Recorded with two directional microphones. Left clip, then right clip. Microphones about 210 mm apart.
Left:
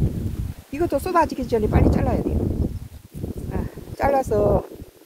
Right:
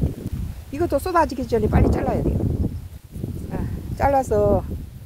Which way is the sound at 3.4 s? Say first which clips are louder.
Right 1 dB; centre (ahead or behind).